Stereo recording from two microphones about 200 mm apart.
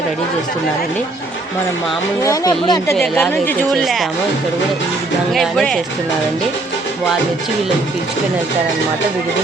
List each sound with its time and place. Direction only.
2.2 s speech: 15° left (ahead or behind)
2.9 s a woman's voice: 5° left (ahead or behind)
5.3 s a woman's voice: centre (ahead or behind)